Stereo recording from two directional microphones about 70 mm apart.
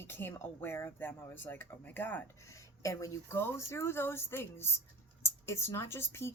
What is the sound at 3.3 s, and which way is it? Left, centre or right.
A woman's voice, left.